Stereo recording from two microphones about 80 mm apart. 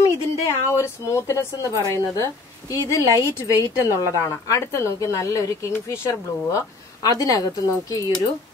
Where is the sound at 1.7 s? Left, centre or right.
Right.